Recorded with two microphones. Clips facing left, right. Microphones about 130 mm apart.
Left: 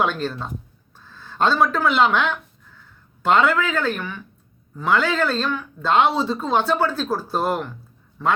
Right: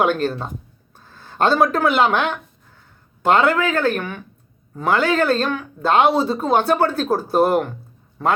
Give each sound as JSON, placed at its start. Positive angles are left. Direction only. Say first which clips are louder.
{"t": 0.0, "sound": "speech", "louder": "right 4 dB", "side_deg": -50}
{"t": 3.4, "sound": "speech", "louder": "right 3 dB", "side_deg": -40}
{"t": 4.7, "sound": "speech", "louder": "right 2 dB", "side_deg": -40}
{"t": 6.0, "sound": "speech", "louder": "right 3 dB", "side_deg": -15}
{"t": 6.7, "sound": "speech", "louder": "right 3 dB", "side_deg": -45}
{"t": 7.2, "sound": "speech", "louder": "right 7 dB", "side_deg": -15}
{"t": 7.5, "sound": "speech", "louder": "right 7 dB", "side_deg": -50}